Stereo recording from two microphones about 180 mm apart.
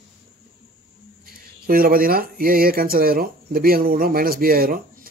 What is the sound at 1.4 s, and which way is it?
Speech, 55° right (ahead or behind).